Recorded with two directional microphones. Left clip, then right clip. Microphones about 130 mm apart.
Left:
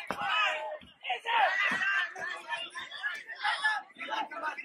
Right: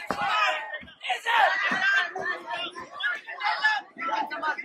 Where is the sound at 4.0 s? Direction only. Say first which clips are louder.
Right 7 dB; 10° left (ahead or behind).